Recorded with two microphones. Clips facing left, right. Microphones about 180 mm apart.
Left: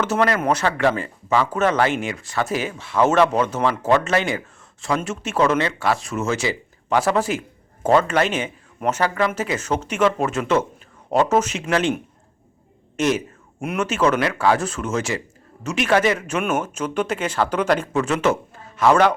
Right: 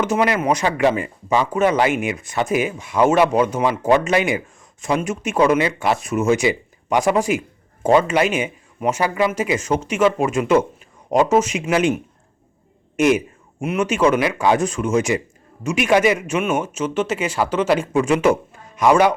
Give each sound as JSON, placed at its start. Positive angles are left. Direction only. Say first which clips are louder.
{"t": 0.0, "sound": "speech", "louder": "right 1 dB", "side_deg": -10}
{"t": 13.0, "sound": "speech", "louder": "right 4 dB", "side_deg": -15}